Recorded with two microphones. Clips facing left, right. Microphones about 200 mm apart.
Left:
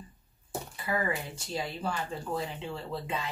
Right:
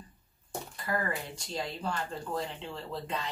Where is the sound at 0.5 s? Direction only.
5° left (ahead or behind).